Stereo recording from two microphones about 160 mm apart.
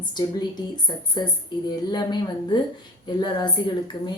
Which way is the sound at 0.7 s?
25° left (ahead or behind).